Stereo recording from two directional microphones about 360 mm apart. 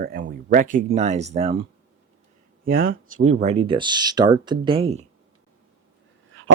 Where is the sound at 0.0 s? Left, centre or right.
Right.